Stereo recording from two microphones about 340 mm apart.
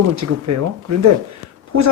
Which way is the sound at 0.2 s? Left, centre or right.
Right.